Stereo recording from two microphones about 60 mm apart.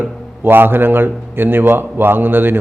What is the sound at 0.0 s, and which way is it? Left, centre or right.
A man's voice, right.